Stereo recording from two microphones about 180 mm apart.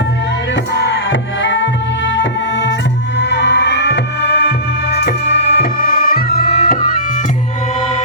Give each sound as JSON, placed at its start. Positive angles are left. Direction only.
{"t": 1.4, "sound": "music", "side_deg": 85}